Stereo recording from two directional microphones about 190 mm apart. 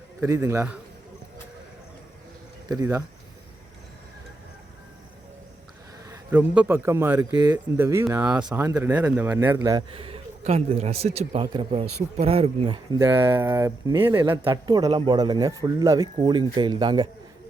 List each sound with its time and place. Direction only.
0.2 s a man's voice: 15° right (ahead or behind)
2.6 s a man's voice: 15° right (ahead or behind)
6.1 s a man's voice: 5° right (ahead or behind)
8.4 s a man's voice: 15° right (ahead or behind)
9.9 s speech: 30° right (ahead or behind)
13.2 s a man's voice: 10° right (ahead or behind)
14.2 s a man's voice: 25° right (ahead or behind)